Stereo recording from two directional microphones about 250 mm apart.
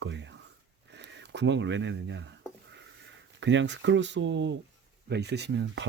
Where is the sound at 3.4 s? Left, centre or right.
Right.